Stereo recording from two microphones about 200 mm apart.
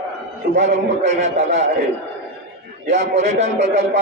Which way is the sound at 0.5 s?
35° right (ahead or behind).